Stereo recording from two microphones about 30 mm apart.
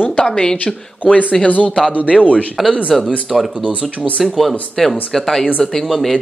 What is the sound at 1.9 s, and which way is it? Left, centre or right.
Speech, left.